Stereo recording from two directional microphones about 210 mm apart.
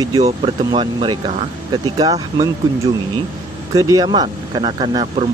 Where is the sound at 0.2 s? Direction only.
25° right (ahead or behind).